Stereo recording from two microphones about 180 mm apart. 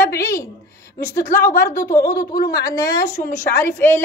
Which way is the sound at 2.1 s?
55° left (ahead or behind).